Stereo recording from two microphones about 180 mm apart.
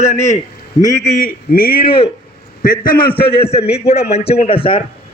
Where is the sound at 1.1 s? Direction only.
55° left (ahead or behind).